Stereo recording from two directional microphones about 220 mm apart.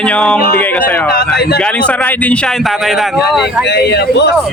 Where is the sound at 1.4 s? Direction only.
45° left (ahead or behind).